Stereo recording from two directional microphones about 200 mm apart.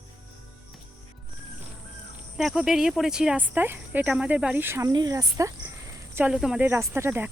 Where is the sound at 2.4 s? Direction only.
Centre (ahead or behind).